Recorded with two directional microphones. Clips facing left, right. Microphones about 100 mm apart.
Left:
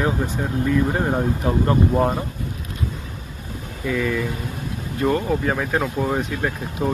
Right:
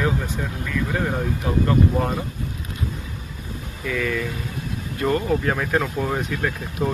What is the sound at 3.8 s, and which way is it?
Speech, 15° left (ahead or behind).